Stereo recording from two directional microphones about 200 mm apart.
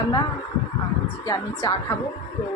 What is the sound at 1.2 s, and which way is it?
Speech, 20° left (ahead or behind).